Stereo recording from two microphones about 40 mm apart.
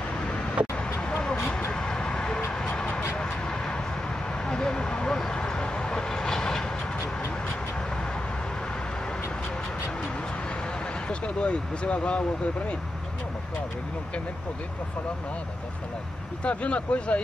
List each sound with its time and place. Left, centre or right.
0.6 s vehicle: right
1.0 s vehicle: centre
2.7 s a sound: left
3.2 s vehicle: centre
4.5 s a sound: left
5.4 s vehicle: left
11.1 s speech: left
16.4 s speech: left